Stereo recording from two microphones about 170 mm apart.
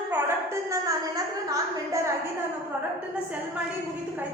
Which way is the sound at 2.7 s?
5° right (ahead or behind).